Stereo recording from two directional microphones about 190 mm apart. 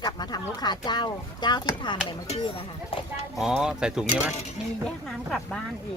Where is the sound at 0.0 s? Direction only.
20° left (ahead or behind).